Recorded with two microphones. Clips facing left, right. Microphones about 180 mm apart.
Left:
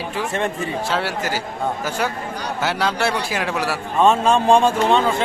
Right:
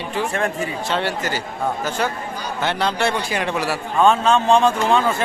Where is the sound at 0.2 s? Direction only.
Centre (ahead or behind).